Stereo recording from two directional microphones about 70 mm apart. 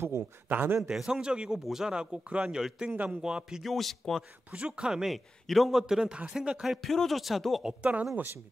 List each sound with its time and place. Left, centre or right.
0.5 s speech: right
0.8 s speech: centre
2.9 s speech: right
3.2 s a man's voice: centre
4.5 s speech: centre
6.6 s a man's voice: centre
7.6 s speech: centre